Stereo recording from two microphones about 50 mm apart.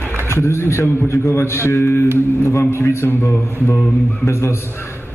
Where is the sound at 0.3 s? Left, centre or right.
Left.